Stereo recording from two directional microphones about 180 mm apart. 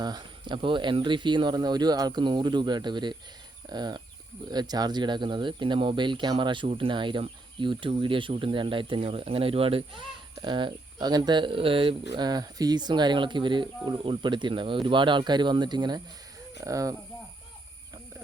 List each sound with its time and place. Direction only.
0.0 s speech: 25° right (ahead or behind)